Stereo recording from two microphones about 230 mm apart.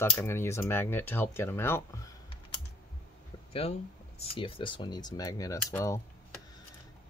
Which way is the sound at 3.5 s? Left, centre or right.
Left.